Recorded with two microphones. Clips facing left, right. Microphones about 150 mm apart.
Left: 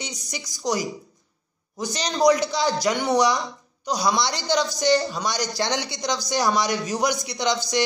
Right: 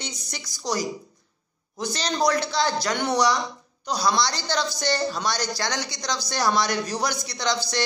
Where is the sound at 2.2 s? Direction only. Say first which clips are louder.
Left 4 dB; 15° left (ahead or behind).